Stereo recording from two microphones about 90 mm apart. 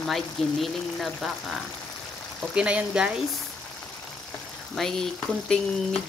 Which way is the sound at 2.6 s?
10° right (ahead or behind).